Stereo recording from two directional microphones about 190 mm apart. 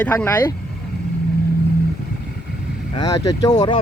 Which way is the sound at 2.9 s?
20° left (ahead or behind).